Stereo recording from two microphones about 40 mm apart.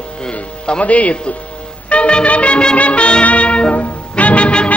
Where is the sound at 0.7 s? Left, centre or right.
Left.